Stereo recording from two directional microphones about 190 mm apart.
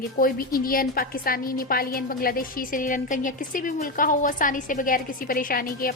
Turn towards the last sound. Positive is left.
turn(degrees=50)  # may be behind; listen again after turning